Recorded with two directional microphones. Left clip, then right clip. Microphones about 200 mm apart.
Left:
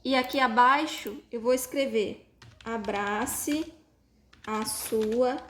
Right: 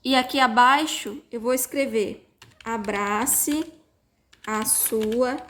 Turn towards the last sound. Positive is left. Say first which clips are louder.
# right 3 dB
turn(degrees=-25)  # may be behind; listen again after turning